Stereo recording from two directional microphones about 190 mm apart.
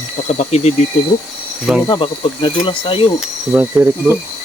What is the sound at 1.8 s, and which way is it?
Speech, 25° left (ahead or behind).